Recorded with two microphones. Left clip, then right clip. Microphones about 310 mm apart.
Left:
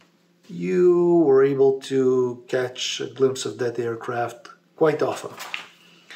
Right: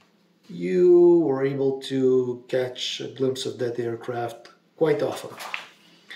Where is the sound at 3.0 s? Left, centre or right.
Centre.